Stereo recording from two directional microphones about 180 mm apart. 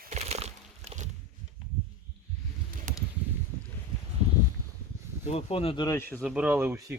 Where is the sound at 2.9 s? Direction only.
45° right (ahead or behind).